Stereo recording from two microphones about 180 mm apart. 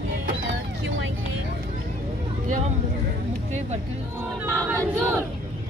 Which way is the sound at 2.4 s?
45° right (ahead or behind).